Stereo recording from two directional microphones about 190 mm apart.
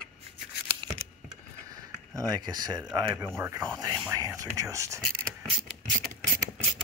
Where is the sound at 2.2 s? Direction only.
20° right (ahead or behind).